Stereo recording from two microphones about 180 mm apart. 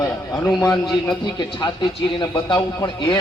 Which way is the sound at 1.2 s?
25° left (ahead or behind).